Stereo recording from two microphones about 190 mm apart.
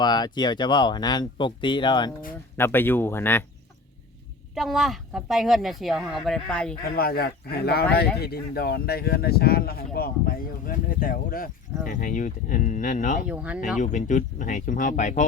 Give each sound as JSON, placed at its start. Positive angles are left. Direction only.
{"t": 0.0, "sound": "speech", "side_deg": 20}
{"t": 2.6, "sound": "speech", "side_deg": 10}
{"t": 4.5, "sound": "speech", "side_deg": 0}
{"t": 6.8, "sound": "speech", "side_deg": 55}
{"t": 13.2, "sound": "speech", "side_deg": -5}
{"t": 13.7, "sound": "speech", "side_deg": 40}